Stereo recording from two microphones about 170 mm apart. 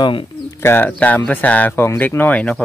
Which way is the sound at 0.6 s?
10° left (ahead or behind).